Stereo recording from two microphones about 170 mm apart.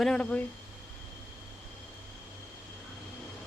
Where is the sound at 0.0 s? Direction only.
5° left (ahead or behind).